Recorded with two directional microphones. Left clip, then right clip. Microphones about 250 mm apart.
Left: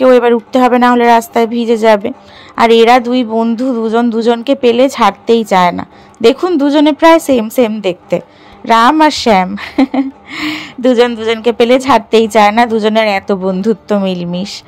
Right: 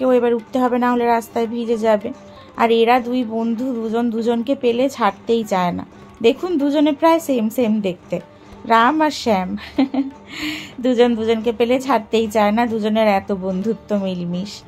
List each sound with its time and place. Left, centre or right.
0.0 s speech: left